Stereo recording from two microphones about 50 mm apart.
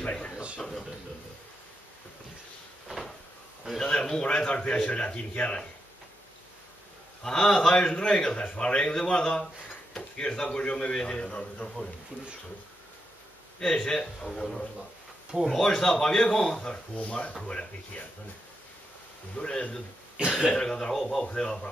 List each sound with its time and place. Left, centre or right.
0.0 s speech: left
0.6 s a man's voice: centre
3.6 s a man's voice: centre; by 5.6 s left
7.2 s a man's voice: centre
13.6 s a man's voice: centre
19.3 s a man's voice: left
20.2 s speech: right
20.5 s a man's voice: centre
21.3 s a man's voice: centre